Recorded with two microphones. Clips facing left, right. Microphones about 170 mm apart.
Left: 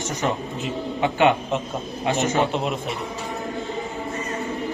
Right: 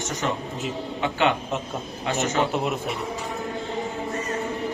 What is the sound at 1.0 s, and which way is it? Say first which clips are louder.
A man's voice: left 4 dB; 15° left (ahead or behind).